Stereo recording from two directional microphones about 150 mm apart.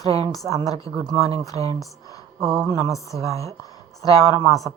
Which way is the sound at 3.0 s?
20° left (ahead or behind).